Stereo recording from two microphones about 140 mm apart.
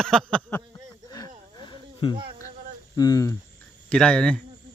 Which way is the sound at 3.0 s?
25° left (ahead or behind).